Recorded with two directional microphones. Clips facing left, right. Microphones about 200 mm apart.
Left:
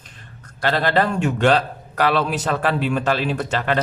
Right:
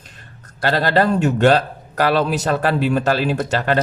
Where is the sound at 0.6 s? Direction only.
40° right (ahead or behind).